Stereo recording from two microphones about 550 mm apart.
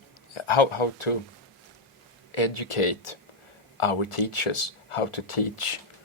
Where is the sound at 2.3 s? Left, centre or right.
Left.